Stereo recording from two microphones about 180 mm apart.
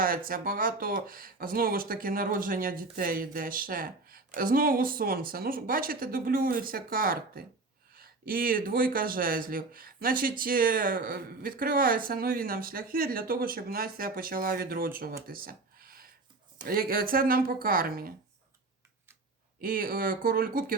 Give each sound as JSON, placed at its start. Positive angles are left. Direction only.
{"t": 0.0, "sound": "speech", "side_deg": -50}
{"t": 15.3, "sound": "a sound", "side_deg": -55}
{"t": 16.6, "sound": "speech", "side_deg": -55}
{"t": 19.6, "sound": "speech", "side_deg": -50}